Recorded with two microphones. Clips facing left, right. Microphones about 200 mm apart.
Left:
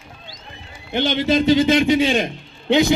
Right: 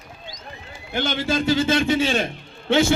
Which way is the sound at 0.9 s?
20° left (ahead or behind).